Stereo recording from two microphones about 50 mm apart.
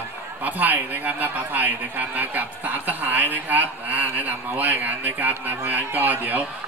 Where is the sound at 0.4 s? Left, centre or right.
Right.